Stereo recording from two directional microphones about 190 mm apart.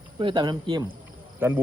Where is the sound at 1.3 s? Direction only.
10° right (ahead or behind).